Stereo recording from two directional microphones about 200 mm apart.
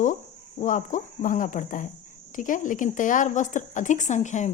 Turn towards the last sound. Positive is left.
turn(degrees=35)  # may be behind; listen again after turning